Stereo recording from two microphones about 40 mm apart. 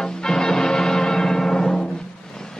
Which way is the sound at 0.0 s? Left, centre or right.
Centre.